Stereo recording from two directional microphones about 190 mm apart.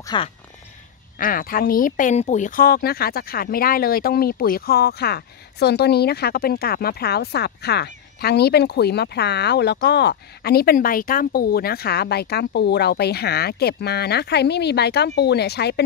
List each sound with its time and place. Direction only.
0.0 s speech: 25° left (ahead or behind)
1.1 s speech: 50° left (ahead or behind)